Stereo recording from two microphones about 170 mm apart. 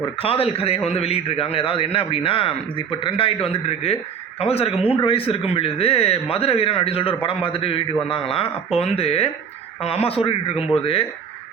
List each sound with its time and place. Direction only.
0.2 s a man's voice: 35° left (ahead or behind)